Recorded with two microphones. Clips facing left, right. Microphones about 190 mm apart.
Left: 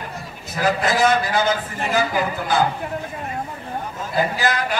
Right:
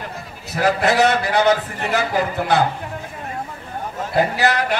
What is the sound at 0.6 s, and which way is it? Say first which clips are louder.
A man's voice: right 3 dB; 65° right (ahead or behind).